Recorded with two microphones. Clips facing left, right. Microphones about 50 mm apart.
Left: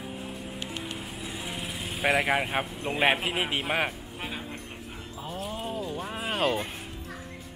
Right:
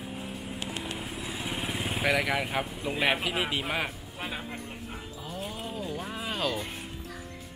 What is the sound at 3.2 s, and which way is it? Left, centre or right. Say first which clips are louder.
Speech: left 1 dB; centre.